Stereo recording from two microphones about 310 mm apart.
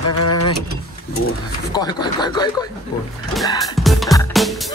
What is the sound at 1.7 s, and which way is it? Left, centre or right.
Speech, centre.